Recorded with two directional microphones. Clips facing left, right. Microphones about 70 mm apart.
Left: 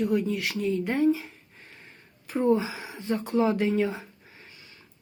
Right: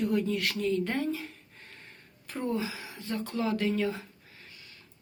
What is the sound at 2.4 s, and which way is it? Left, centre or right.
Speech, left.